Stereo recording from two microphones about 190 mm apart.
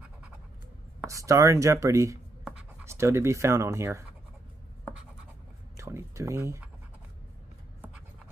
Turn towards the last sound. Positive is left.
turn(degrees=-15)  # may be behind; listen again after turning